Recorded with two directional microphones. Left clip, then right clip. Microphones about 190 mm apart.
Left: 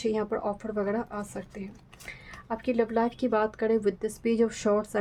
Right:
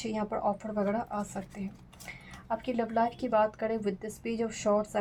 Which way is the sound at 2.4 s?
30° left (ahead or behind).